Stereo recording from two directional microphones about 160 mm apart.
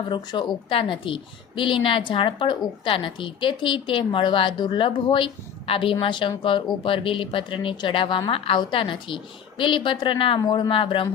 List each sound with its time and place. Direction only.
0.1 s a woman's voice: 30° left (ahead or behind)